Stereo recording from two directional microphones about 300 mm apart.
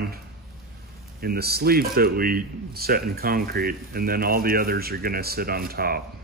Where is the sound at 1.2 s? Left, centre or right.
Right.